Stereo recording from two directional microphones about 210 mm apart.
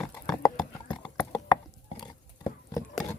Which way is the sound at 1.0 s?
20° left (ahead or behind).